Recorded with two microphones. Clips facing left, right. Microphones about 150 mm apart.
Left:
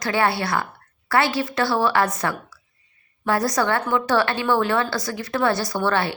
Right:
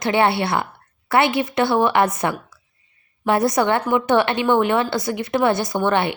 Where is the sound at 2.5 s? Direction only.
25° right (ahead or behind).